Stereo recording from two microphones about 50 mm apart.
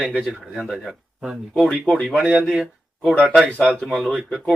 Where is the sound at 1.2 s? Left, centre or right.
Centre.